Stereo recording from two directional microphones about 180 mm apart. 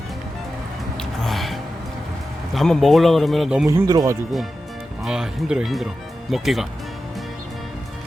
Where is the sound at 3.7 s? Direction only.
15° right (ahead or behind).